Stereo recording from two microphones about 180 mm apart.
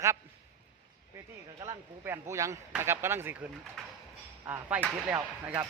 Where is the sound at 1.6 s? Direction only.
15° right (ahead or behind).